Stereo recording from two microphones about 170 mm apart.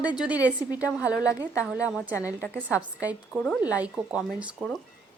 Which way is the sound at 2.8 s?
10° right (ahead or behind).